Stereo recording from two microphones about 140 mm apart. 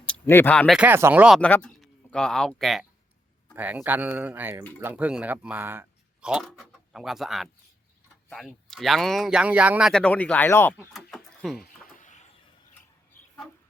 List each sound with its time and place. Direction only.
0.1 s speech: 15° left (ahead or behind)
0.7 s speech: 5° right (ahead or behind)
1.4 s speech: 10° left (ahead or behind)
3.5 s speech: 10° right (ahead or behind)
6.3 s speech: centre (ahead or behind)
9.9 s speech: 10° left (ahead or behind)
10.9 s a sound: centre (ahead or behind)
11.6 s a sound: 65° left (ahead or behind)